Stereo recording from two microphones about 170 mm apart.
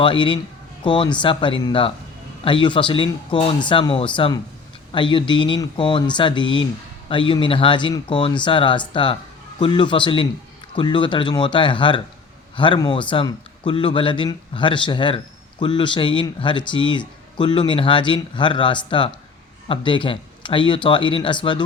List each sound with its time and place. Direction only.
0.0 s speech: 30° left (ahead or behind)